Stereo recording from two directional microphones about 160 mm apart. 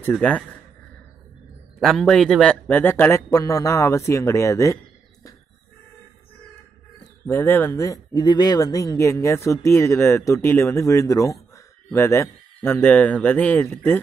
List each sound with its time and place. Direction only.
0.1 s speech: 10° left (ahead or behind)
1.8 s speech: 5° left (ahead or behind); by 4.7 s 20° left (ahead or behind)
7.2 s speech: 15° left (ahead or behind)